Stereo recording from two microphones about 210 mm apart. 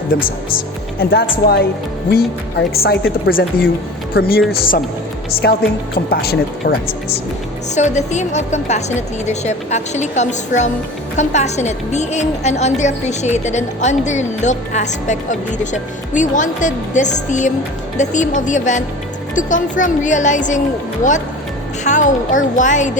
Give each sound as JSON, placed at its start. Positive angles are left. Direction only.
{"t": 0.1, "sound": "speech", "side_deg": 45}
{"t": 7.8, "sound": "a woman's voice", "side_deg": 35}
{"t": 21.8, "sound": "a woman's voice", "side_deg": 35}